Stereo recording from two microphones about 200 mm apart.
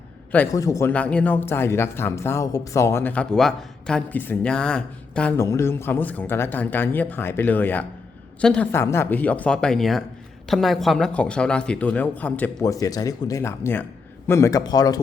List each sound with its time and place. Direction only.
0.3 s speech: 15° left (ahead or behind)